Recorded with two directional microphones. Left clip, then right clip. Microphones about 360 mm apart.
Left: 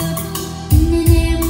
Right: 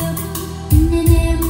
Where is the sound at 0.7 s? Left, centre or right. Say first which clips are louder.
Even; centre.